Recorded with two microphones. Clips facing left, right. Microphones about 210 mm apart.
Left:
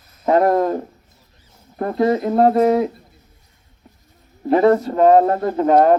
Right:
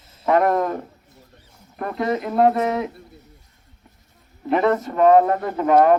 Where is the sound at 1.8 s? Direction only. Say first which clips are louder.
Left 6 dB; 30° left (ahead or behind).